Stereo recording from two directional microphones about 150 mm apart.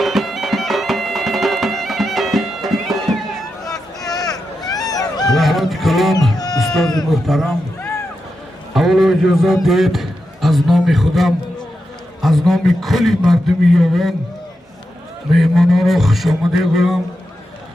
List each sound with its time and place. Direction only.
0.0 s bagpipes: centre (ahead or behind)
3.7 s vehicle: 25° left (ahead or behind)
4.9 s honk: 25° left (ahead or behind)
5.4 s music: centre (ahead or behind)
6.3 s music: 25° left (ahead or behind)
6.6 s speech: 5° left (ahead or behind)
8.7 s a sound: centre (ahead or behind)
9.6 s a man's voice: centre (ahead or behind)
15.3 s a man's voice: centre (ahead or behind)